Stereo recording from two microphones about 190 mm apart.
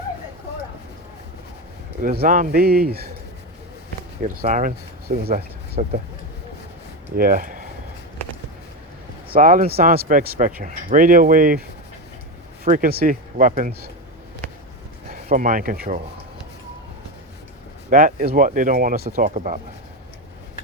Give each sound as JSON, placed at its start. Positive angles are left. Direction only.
{"t": 2.0, "sound": "speech", "side_deg": -45}
{"t": 4.2, "sound": "speech", "side_deg": -40}
{"t": 7.2, "sound": "speech", "side_deg": -50}
{"t": 9.3, "sound": "speech", "side_deg": -45}
{"t": 12.6, "sound": "speech", "side_deg": -45}
{"t": 15.1, "sound": "speech", "side_deg": -45}
{"t": 17.9, "sound": "speech", "side_deg": -45}